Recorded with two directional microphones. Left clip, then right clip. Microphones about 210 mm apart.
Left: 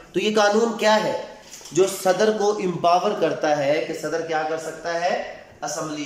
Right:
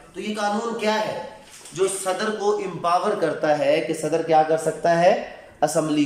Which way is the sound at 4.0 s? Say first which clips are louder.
Right 5 dB; 15° right (ahead or behind).